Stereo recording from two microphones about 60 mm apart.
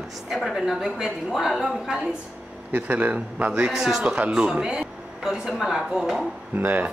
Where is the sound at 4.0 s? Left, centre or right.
Centre.